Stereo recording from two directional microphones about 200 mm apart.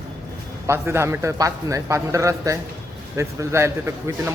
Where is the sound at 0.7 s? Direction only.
15° right (ahead or behind).